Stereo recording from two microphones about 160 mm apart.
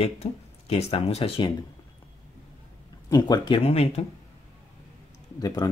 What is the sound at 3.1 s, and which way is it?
Speech, 25° left (ahead or behind).